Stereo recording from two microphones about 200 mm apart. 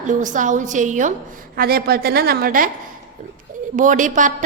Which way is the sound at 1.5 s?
50° right (ahead or behind).